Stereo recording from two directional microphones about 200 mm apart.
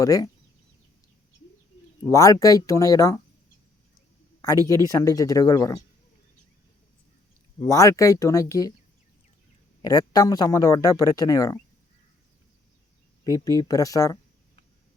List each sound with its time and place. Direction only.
0.0 s a man's voice: 15° left (ahead or behind)
2.0 s a man's voice: 15° left (ahead or behind)
4.7 s a man's voice: 15° left (ahead or behind)
7.6 s a man's voice: 15° left (ahead or behind)
9.8 s a man's voice: 20° left (ahead or behind)
13.2 s a man's voice: 15° left (ahead or behind)